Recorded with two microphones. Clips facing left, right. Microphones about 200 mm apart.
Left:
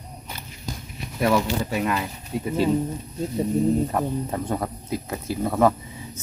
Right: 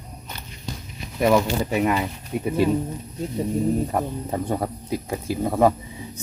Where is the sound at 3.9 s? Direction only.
15° right (ahead or behind).